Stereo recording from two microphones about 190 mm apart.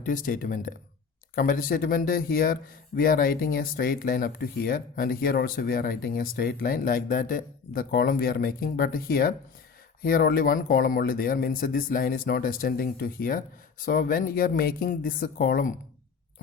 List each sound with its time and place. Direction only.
0.0 s speech: 45° left (ahead or behind)